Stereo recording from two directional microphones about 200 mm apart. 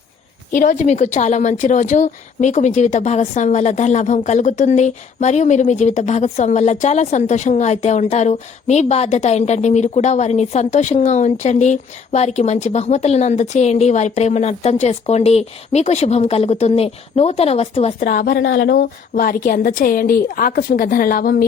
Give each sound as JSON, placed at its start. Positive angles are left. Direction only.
{"t": 0.5, "sound": "a woman's voice", "side_deg": 40}
{"t": 18.0, "sound": "a woman's voice", "side_deg": 50}